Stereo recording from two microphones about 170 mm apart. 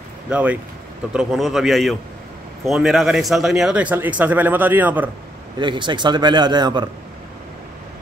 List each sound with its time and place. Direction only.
0.3 s a man's voice: 10° right (ahead or behind)
5.6 s a man's voice: 25° right (ahead or behind)